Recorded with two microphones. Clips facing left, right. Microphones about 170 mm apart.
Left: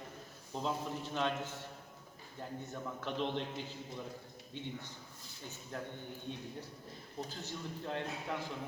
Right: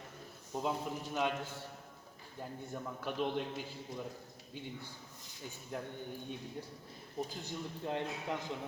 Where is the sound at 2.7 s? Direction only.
10° right (ahead or behind).